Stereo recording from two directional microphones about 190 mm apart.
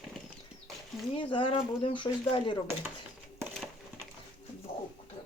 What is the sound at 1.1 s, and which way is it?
Speech, 25° left (ahead or behind).